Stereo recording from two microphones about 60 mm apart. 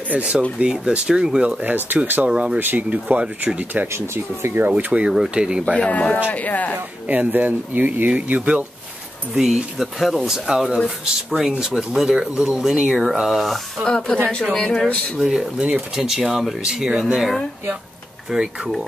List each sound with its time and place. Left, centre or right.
0.1 s speech: right
1.6 s speech: right
2.2 s speech: centre
2.6 s speech: right
3.9 s speech: right
4.6 s speech: right
5.1 s speech: centre
6.3 s speech: left
7.1 s speech: right
9.3 s speech: centre
13.8 s speech: centre
15.1 s speech: centre
15.9 s speech: centre